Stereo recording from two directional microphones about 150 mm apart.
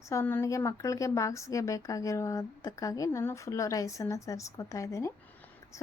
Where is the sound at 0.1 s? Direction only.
15° left (ahead or behind).